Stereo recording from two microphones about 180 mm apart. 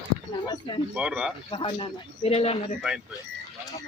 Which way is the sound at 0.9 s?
5° right (ahead or behind).